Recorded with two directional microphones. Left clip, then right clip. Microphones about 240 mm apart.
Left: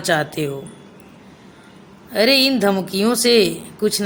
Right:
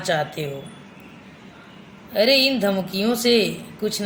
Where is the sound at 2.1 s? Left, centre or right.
Left.